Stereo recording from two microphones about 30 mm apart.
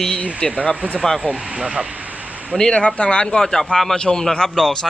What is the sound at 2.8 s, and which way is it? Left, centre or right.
Speech, left.